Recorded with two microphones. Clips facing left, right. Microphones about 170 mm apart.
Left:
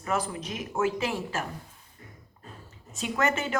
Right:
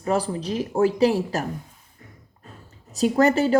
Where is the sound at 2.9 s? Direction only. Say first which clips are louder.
Right 10 dB; 35° right (ahead or behind).